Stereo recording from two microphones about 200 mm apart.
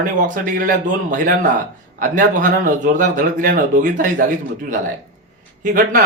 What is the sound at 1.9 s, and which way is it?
A man's voice, 40° right (ahead or behind).